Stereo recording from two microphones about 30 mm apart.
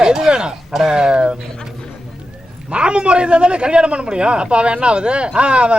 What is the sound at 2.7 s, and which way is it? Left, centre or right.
Speech, right.